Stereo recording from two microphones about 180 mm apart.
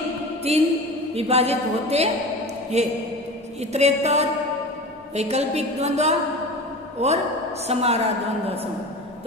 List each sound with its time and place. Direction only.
0.5 s a woman's voice: 35° right (ahead or behind)